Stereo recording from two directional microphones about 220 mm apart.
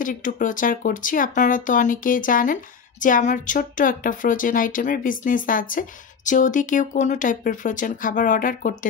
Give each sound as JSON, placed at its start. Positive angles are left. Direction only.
{"t": 0.0, "sound": "speech", "side_deg": 35}